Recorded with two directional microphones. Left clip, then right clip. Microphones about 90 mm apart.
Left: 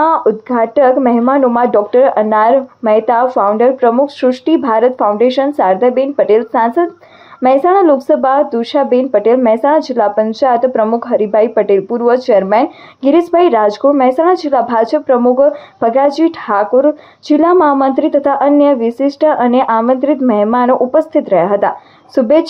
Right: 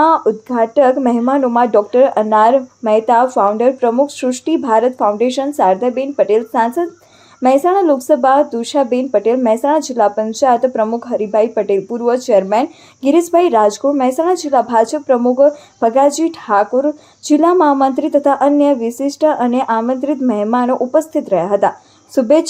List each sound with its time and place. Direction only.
0.0 s speech: 15° right (ahead or behind)